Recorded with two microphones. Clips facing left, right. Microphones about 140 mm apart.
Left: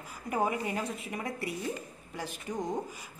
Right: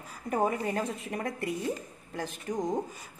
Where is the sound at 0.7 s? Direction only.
40° right (ahead or behind).